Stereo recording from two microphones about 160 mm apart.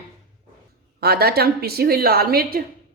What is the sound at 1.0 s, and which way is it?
A man's voice, 75° right (ahead or behind).